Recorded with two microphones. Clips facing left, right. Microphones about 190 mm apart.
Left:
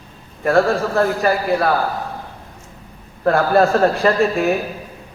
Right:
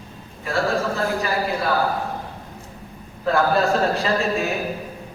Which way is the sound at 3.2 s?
55° left (ahead or behind).